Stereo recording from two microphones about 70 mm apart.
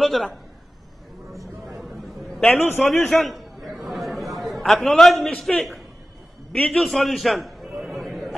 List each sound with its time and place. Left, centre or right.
0.0 s a man's voice: centre
2.3 s a man's voice: centre
2.8 s chatter: centre
6.5 s a man's voice: centre
6.8 s a sound: centre